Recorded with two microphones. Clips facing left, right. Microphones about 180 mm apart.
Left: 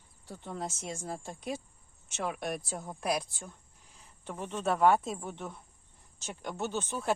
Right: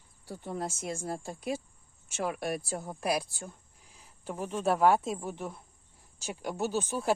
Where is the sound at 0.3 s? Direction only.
10° right (ahead or behind).